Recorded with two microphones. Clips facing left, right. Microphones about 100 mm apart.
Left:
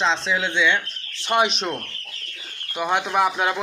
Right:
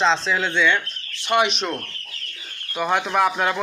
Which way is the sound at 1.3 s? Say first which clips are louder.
Right 1 dB; 30° left (ahead or behind).